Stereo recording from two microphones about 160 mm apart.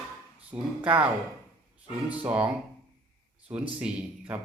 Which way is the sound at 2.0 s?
10° right (ahead or behind).